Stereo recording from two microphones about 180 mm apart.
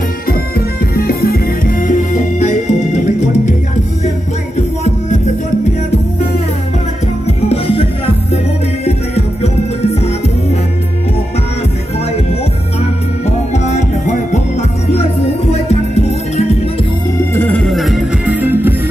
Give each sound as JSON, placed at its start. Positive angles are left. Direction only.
{"t": 0.3, "sound": "music", "side_deg": 60}
{"t": 2.4, "sound": "music", "side_deg": 40}
{"t": 4.6, "sound": "music", "side_deg": 40}
{"t": 7.2, "sound": "music", "side_deg": 35}
{"t": 13.2, "sound": "music", "side_deg": 40}
{"t": 15.5, "sound": "music", "side_deg": 35}
{"t": 17.2, "sound": "music", "side_deg": 10}